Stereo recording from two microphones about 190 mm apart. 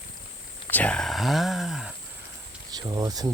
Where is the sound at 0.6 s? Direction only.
5° left (ahead or behind).